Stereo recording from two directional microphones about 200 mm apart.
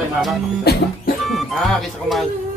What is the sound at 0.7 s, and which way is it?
Music, 55° left (ahead or behind).